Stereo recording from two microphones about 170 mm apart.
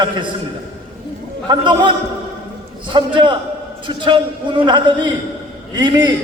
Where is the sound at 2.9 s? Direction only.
30° right (ahead or behind).